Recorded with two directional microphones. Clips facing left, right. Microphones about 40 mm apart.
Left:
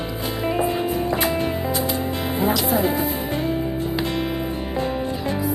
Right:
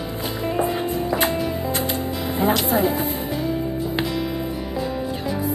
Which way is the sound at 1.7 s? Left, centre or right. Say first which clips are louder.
Left 1 dB; right.